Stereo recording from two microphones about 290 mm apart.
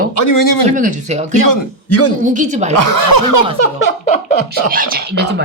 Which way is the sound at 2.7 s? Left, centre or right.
Left.